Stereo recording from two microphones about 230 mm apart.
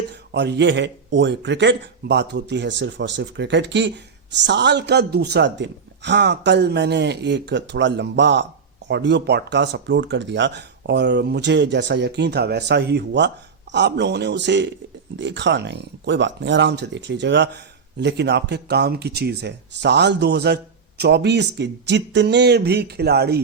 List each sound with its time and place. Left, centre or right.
0.3 s speech: right